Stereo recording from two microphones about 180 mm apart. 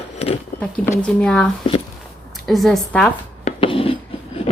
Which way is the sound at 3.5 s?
30° left (ahead or behind).